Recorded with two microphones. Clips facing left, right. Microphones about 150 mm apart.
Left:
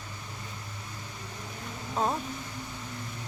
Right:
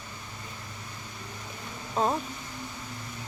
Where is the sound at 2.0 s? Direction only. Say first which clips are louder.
Right 2 dB; centre (ahead or behind).